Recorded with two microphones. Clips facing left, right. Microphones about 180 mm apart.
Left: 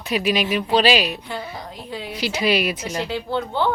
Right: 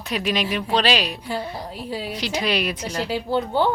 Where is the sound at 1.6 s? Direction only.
10° right (ahead or behind).